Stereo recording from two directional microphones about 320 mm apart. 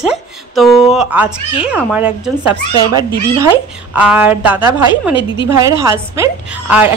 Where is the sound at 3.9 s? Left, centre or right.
Centre.